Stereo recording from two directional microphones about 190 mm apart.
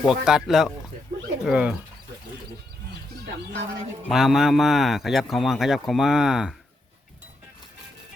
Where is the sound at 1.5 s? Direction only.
5° right (ahead or behind).